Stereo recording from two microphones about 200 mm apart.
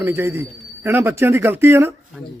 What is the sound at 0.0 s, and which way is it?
Speech, 15° right (ahead or behind).